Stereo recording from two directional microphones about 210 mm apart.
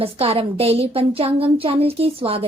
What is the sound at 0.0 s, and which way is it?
A woman's voice, 25° right (ahead or behind).